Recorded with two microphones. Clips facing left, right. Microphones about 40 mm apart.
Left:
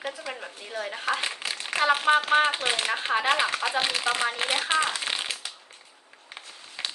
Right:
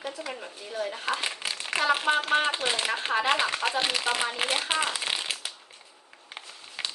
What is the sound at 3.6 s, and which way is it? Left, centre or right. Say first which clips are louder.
Speech: even; right.